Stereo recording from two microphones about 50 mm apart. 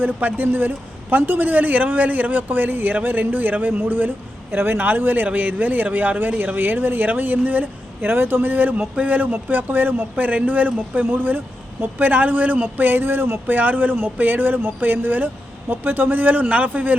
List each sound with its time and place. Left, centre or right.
0.0 s a man's voice: right
6.6 s a man's voice: right
13.5 s a man's voice: right